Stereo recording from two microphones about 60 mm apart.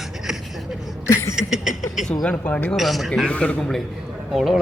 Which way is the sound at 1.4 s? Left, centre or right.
Centre.